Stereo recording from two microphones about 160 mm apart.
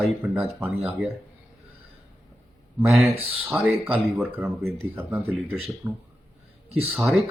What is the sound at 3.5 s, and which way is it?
Speech, 10° right (ahead or behind).